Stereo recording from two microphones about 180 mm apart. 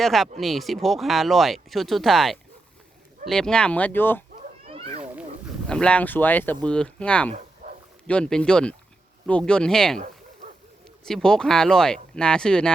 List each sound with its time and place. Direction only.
0.0 s speech: centre (ahead or behind)
4.6 s cat: 30° right (ahead or behind)
5.6 s speech: 5° left (ahead or behind)
11.0 s speech: 5° left (ahead or behind)